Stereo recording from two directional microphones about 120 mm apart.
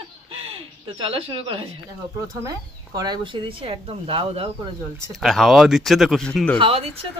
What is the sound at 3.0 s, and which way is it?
Speech, 40° right (ahead or behind).